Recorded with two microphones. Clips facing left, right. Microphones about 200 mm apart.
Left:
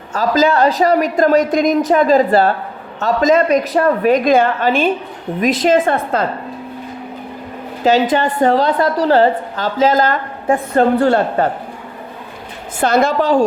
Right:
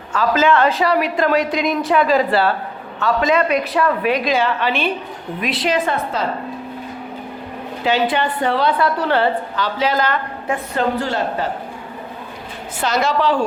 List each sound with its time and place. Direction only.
0.1 s a woman's voice: 40° left (ahead or behind)
7.9 s a woman's voice: 45° left (ahead or behind)
10.8 s speech: 60° left (ahead or behind)
12.8 s a woman's voice: 55° left (ahead or behind)